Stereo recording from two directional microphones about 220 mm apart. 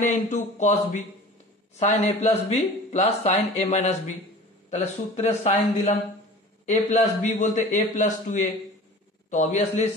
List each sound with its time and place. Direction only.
0.0 s a man's voice: 35° left (ahead or behind)